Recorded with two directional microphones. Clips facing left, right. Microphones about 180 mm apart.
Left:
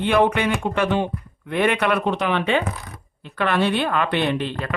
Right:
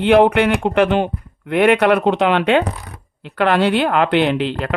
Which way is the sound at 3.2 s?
80° right.